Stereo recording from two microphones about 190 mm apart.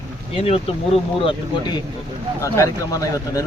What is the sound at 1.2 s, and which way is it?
Speech, 20° left (ahead or behind).